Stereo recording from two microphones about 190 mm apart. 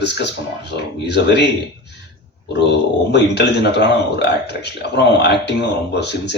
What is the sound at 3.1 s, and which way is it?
A man's voice, 60° left (ahead or behind).